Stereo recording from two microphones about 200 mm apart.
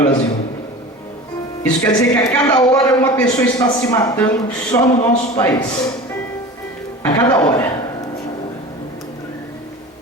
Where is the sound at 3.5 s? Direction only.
20° left (ahead or behind).